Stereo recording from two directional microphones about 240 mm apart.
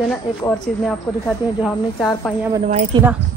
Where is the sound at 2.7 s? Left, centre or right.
Right.